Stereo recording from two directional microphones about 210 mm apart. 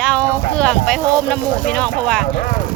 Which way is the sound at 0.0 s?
5° left (ahead or behind).